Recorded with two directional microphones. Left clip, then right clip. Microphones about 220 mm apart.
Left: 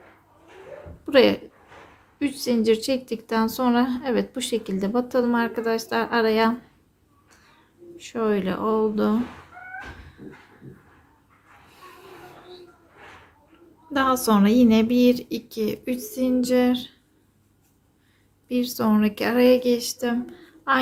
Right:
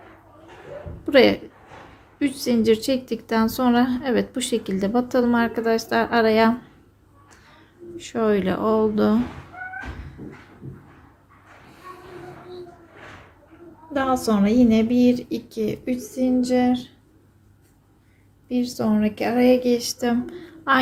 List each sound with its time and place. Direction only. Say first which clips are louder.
1.0 s a woman's voice: right 2 dB; 5° left (ahead or behind)
7.9 s a woman's voice: right 3 dB; centre (ahead or behind)
13.9 s speech: left 1 dB; 25° left (ahead or behind)
16.0 s child singing: right 1 dB; 20° left (ahead or behind)
18.4 s speech: even; 20° left (ahead or behind); by 20.7 s centre (ahead or behind)